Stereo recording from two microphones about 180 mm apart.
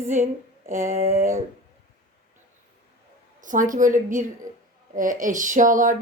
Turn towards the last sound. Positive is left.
turn(degrees=-45)  # may be behind; listen again after turning